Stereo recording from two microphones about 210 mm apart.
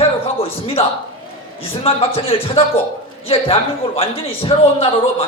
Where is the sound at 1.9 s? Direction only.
25° left (ahead or behind).